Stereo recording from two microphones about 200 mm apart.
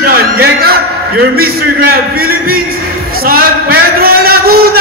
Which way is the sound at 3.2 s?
50° right (ahead or behind).